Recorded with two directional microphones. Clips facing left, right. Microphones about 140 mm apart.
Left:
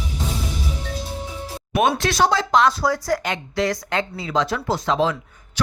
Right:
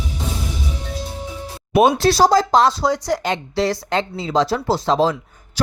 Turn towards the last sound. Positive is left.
turn(degrees=-35)  # may be behind; listen again after turning